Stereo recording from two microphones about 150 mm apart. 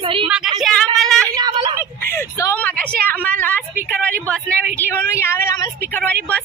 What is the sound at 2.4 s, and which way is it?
A woman's voice, 15° left (ahead or behind).